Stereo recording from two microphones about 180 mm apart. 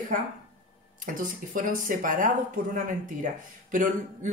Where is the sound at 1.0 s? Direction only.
45° right (ahead or behind).